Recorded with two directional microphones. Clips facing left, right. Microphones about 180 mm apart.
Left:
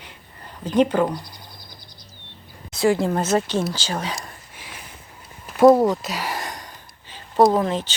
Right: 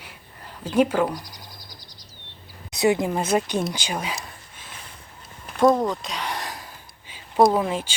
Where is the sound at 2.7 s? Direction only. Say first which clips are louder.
Left 1 dB; 20° right (ahead or behind).